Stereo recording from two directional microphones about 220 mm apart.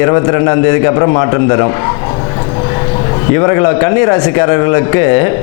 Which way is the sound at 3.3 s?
20° left (ahead or behind).